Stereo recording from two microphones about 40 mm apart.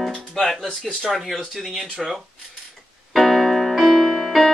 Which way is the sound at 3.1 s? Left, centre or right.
Centre.